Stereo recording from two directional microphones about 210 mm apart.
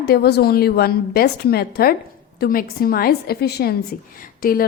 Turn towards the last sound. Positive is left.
turn(degrees=45)  # may be behind; listen again after turning